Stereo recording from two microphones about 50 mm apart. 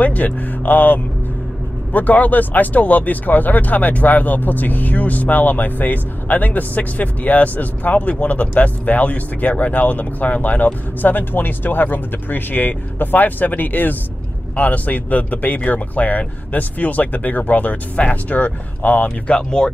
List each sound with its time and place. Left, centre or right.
0.0 s speech: left